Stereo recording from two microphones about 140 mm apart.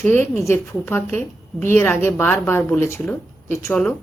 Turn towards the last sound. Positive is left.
turn(degrees=20)  # may be behind; listen again after turning